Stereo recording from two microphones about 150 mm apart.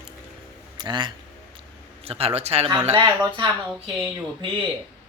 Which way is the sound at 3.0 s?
30° right (ahead or behind).